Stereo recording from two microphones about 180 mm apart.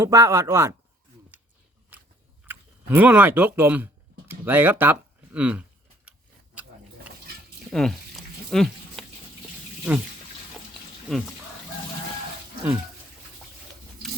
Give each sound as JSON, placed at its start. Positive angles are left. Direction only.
{"t": 0.0, "sound": "speech", "side_deg": -15}
{"t": 1.9, "sound": "biting", "side_deg": -10}
{"t": 2.5, "sound": "speech", "side_deg": -10}
{"t": 6.1, "sound": "a sound", "side_deg": -5}
{"t": 9.9, "sound": "speech", "side_deg": -10}